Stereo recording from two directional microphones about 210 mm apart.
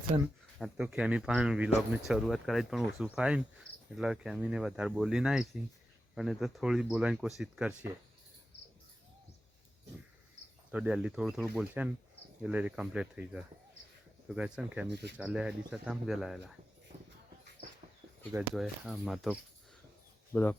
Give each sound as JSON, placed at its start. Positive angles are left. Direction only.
{"t": 0.6, "sound": "speech", "side_deg": -5}
{"t": 10.7, "sound": "speech", "side_deg": -5}
{"t": 14.8, "sound": "speech", "side_deg": -55}
{"t": 15.2, "sound": "speech", "side_deg": -5}
{"t": 18.3, "sound": "speech", "side_deg": -5}